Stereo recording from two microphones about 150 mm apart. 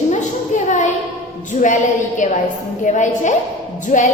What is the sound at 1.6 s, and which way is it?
A woman's voice, 60° left (ahead or behind).